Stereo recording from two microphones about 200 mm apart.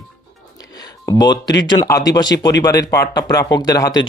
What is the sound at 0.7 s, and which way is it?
Speech, 20° left (ahead or behind).